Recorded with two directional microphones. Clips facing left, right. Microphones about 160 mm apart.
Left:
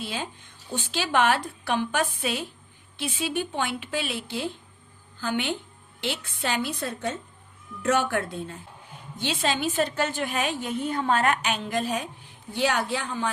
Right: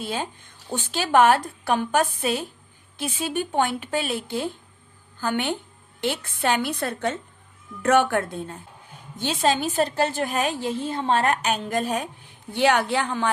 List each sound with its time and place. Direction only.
0.0 s a woman's voice: 50° right (ahead or behind)
12.5 s a woman's voice: 65° right (ahead or behind)